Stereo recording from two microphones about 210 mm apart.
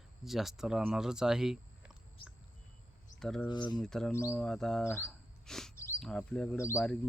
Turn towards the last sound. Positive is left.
turn(degrees=10)  # may be behind; listen again after turning